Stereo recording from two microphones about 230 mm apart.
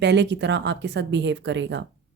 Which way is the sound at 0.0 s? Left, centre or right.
Right.